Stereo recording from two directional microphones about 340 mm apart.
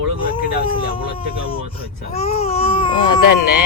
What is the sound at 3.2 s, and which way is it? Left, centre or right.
Speech, left.